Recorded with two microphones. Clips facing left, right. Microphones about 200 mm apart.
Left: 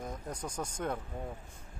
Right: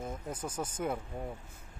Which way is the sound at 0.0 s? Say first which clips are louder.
Right 1 dB; 5° right (ahead or behind).